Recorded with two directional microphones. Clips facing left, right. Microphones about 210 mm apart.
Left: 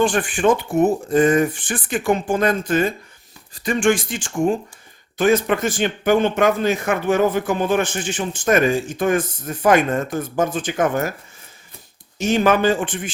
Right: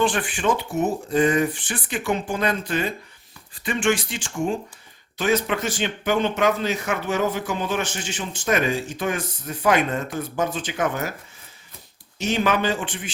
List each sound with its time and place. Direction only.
0.0 s speech: 45° left (ahead or behind)
12.2 s speech: 50° left (ahead or behind)